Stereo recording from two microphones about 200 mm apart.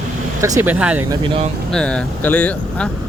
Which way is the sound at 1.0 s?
25° right (ahead or behind).